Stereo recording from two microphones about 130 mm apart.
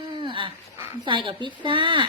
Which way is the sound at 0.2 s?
40° right (ahead or behind).